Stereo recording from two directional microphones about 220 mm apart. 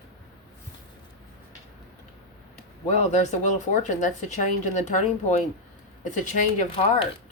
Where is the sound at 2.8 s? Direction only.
30° left (ahead or behind).